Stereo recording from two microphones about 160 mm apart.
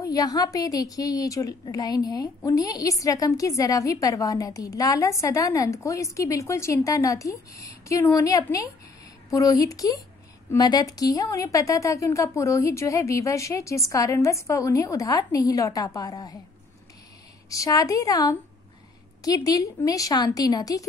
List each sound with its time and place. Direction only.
0.0 s a woman's voice: 25° left (ahead or behind)
17.5 s a woman's voice: 20° left (ahead or behind)